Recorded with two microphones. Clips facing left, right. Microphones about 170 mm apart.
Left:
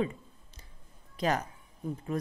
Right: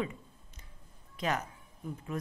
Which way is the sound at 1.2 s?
35° left (ahead or behind).